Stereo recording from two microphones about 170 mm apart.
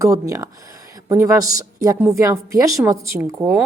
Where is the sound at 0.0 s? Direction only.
20° right (ahead or behind).